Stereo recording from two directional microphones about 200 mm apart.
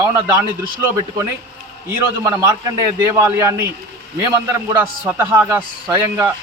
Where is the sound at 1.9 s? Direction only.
15° right (ahead or behind).